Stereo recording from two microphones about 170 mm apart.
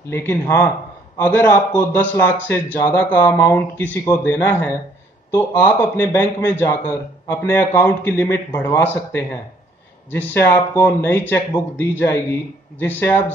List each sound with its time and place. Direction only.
0.1 s a man's voice: 15° left (ahead or behind)